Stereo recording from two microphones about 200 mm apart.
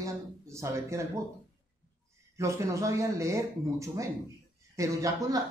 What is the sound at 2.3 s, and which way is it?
Speech, 15° right (ahead or behind).